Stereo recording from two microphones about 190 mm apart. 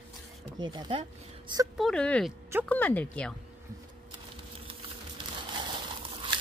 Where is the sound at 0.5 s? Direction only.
25° right (ahead or behind).